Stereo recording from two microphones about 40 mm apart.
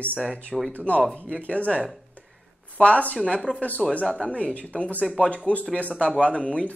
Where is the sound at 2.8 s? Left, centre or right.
Left.